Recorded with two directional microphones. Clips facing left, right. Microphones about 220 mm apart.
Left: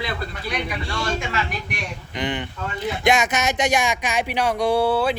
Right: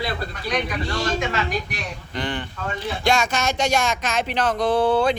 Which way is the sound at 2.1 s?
20° left (ahead or behind).